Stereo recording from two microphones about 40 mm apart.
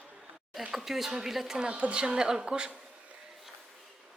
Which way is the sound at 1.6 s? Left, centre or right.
Right.